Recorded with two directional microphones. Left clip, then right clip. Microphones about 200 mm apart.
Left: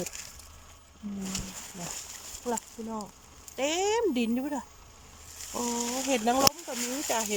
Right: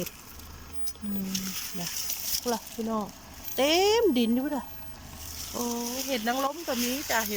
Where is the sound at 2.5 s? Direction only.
Centre (ahead or behind).